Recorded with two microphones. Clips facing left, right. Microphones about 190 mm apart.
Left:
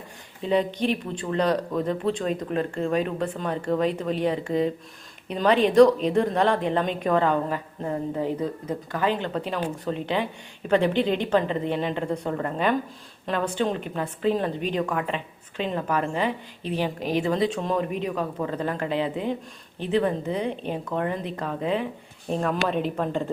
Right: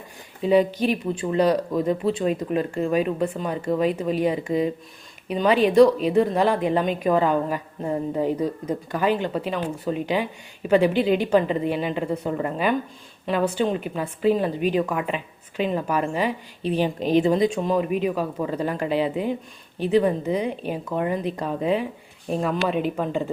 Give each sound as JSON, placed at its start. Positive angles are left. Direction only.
{"t": 0.4, "sound": "a woman's voice", "side_deg": -10}
{"t": 17.6, "sound": "a woman's voice", "side_deg": -5}